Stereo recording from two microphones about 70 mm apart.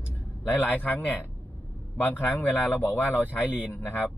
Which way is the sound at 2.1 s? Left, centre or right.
Left.